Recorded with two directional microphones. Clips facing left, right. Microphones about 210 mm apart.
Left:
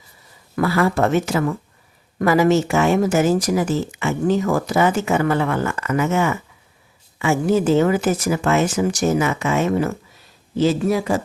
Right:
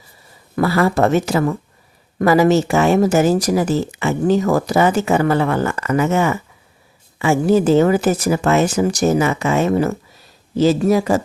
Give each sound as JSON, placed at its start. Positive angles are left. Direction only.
{"t": 0.5, "sound": "speech", "side_deg": -35}